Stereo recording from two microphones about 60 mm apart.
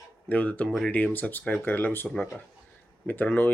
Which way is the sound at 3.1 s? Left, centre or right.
Left.